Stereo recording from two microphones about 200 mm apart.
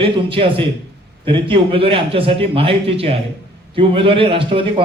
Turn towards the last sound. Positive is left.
turn(degrees=-25)  # may be behind; listen again after turning